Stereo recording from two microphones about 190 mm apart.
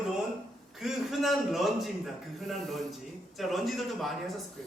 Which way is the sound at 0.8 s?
Centre (ahead or behind).